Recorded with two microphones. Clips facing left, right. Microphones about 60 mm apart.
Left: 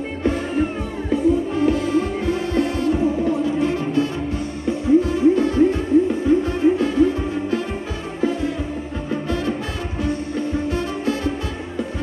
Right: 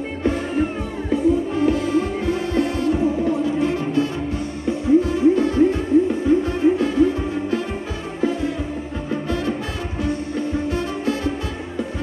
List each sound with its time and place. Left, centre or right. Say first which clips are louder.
0.2 s music: even; centre
9.1 s music: even; centre
10.7 s music: even; centre